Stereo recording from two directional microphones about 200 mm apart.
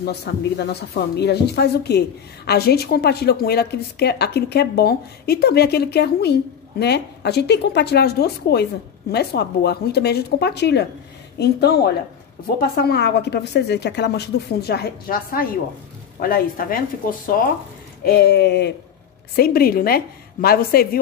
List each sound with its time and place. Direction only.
0.0 s speech: 55° left (ahead or behind)